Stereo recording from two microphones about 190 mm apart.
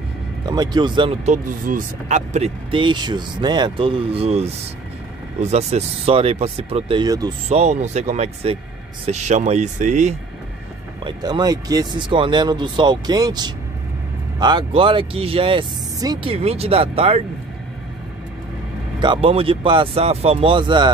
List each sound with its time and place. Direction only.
0.5 s speech: 20° right (ahead or behind)
7.4 s speech: 35° right (ahead or behind)
11.1 s speech: 20° right (ahead or behind)
18.9 s speech: 25° right (ahead or behind)